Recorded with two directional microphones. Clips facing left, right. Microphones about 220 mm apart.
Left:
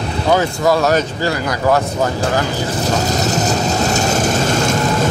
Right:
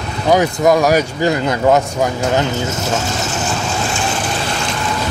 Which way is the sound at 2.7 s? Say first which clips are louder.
Left 2 dB; 40° left (ahead or behind).